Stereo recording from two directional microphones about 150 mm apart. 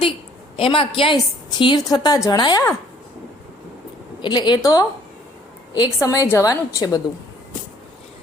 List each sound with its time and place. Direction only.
0.5 s a woman's voice: 35° left (ahead or behind)
4.2 s a woman's voice: 30° left (ahead or behind)